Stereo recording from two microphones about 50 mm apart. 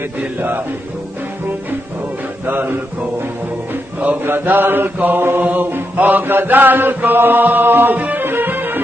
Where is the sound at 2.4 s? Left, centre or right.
Right.